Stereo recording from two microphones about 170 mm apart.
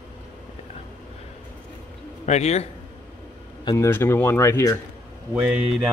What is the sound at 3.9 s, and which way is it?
Speech, 15° left (ahead or behind).